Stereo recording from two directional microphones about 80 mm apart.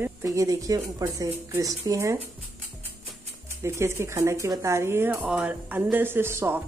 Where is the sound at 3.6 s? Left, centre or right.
Right.